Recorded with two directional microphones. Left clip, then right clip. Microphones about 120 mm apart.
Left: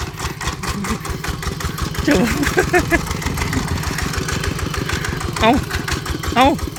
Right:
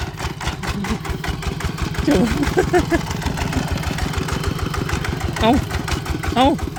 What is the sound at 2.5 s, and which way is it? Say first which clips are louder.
Speech: left 2 dB; 25° right (ahead or behind).